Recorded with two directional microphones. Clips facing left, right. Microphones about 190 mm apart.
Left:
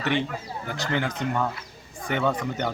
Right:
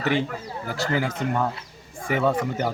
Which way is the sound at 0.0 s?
40° right (ahead or behind).